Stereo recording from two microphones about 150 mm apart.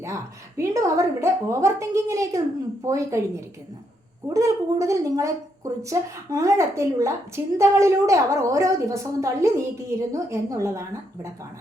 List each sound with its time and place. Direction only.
0.0 s a woman's voice: 20° right (ahead or behind)
4.4 s a woman's voice: 20° right (ahead or behind)